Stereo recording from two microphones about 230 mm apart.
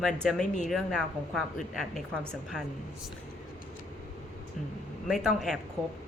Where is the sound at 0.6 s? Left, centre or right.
Centre.